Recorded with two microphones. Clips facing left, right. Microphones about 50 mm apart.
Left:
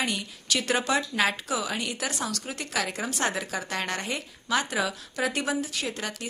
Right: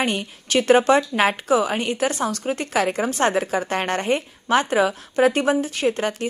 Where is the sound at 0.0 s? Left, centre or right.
Right.